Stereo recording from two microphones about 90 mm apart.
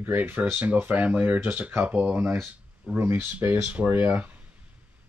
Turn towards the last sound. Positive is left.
turn(degrees=-20)  # may be behind; listen again after turning